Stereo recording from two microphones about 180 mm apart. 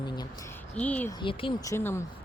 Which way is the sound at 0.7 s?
10° left (ahead or behind).